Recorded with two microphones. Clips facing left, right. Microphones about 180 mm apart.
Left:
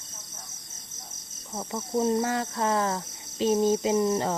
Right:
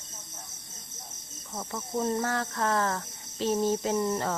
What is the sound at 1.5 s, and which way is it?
Speech, 20° left (ahead or behind).